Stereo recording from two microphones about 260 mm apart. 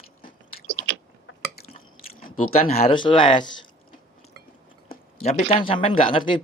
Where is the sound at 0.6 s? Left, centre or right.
Right.